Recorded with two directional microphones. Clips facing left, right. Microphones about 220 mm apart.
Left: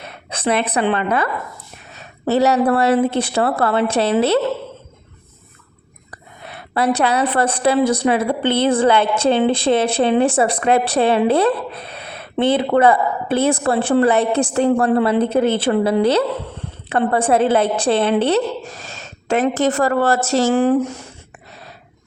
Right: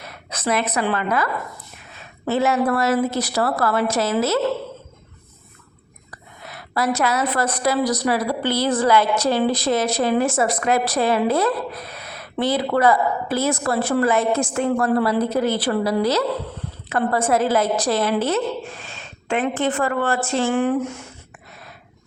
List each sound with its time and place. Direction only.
0.0 s a woman's voice: 30° left (ahead or behind)
6.1 s a woman's voice: 30° left (ahead or behind)